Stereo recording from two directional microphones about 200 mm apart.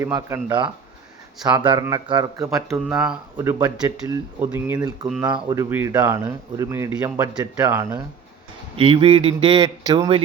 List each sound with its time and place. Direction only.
0.0 s a man's voice: 15° right (ahead or behind)
2.6 s speech: centre (ahead or behind)
3.3 s speech: 15° right (ahead or behind)
5.5 s speech: 15° right (ahead or behind)
8.7 s a man's voice: 30° right (ahead or behind)